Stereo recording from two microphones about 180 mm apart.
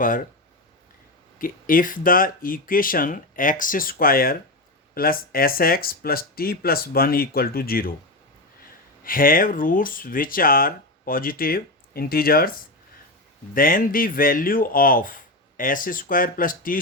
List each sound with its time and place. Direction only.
1.4 s speech: 50° left (ahead or behind)
9.0 s speech: 50° left (ahead or behind)